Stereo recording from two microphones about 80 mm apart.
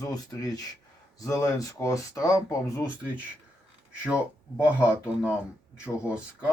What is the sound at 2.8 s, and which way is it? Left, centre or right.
Speech, centre.